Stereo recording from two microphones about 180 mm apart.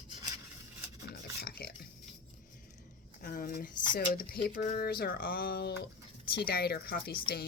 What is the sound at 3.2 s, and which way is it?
Speech, 55° left (ahead or behind).